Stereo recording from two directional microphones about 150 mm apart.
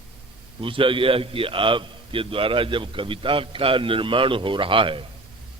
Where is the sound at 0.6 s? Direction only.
35° right (ahead or behind).